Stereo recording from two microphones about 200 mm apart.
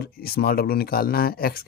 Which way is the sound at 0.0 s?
50° left (ahead or behind).